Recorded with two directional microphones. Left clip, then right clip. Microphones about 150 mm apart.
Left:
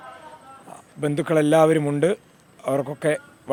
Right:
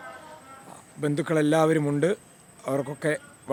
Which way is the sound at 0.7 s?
20° left (ahead or behind).